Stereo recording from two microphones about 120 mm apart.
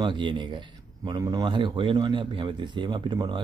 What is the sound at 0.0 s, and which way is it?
Speech, 40° right (ahead or behind).